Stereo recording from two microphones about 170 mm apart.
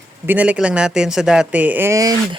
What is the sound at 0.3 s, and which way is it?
Speech, 10° right (ahead or behind).